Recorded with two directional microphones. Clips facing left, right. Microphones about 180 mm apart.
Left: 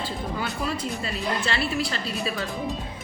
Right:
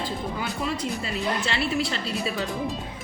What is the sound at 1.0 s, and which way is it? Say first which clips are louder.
Speech: even; 20° right (ahead or behind).